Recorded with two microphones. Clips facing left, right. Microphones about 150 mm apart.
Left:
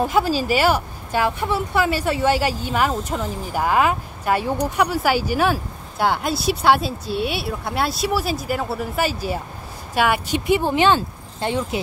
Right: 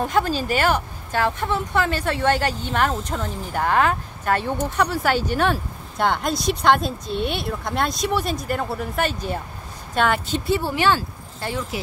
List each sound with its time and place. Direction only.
0.0 s speech: 10° left (ahead or behind); by 11.8 s 25° left (ahead or behind)